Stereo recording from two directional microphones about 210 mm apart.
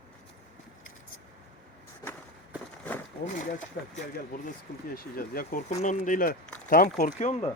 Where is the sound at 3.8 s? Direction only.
45° left (ahead or behind).